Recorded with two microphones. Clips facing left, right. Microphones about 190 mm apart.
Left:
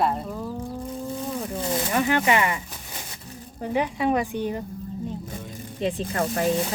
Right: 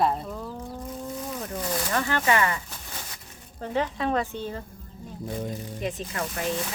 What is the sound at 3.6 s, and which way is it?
Speech, 15° left (ahead or behind).